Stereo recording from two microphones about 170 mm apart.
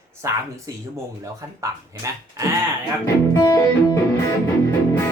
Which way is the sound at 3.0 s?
20° left (ahead or behind).